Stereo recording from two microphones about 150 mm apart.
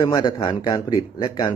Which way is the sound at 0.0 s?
25° left (ahead or behind).